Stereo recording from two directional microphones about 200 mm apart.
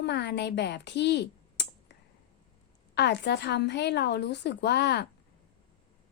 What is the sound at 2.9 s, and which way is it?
A woman's voice, 55° left (ahead or behind).